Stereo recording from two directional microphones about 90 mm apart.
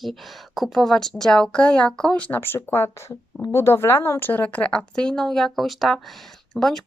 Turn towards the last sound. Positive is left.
turn(degrees=5)  # may be behind; listen again after turning